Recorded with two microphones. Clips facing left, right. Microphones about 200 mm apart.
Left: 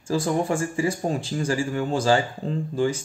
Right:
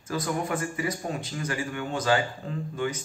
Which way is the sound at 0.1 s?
30° left (ahead or behind).